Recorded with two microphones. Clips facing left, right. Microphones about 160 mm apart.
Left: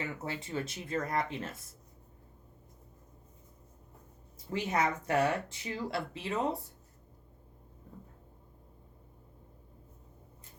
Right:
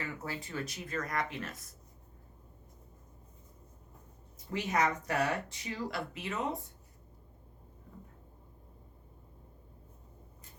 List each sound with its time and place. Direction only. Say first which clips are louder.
0.0 s speech: left 2 dB; 25° left (ahead or behind)
4.5 s speech: even; 30° left (ahead or behind)